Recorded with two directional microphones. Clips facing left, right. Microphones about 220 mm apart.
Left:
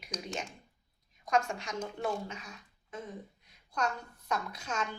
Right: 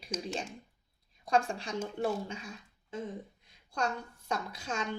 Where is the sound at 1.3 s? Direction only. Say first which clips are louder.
Right 1 dB; 30° right (ahead or behind).